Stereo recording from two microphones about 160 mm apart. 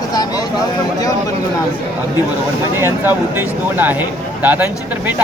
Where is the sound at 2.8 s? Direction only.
15° right (ahead or behind).